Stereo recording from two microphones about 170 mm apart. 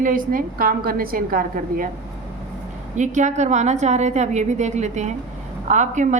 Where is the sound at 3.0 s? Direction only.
45° right (ahead or behind).